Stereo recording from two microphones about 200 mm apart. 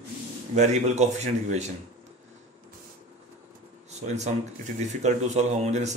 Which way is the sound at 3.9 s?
35° right (ahead or behind).